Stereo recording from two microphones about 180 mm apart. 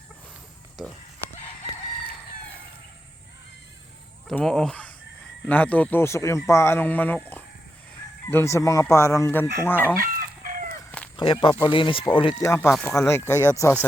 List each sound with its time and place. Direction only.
4.3 s speech: 5° left (ahead or behind)
10.0 s chicken: 50° right (ahead or behind)
11.2 s speech: 30° left (ahead or behind)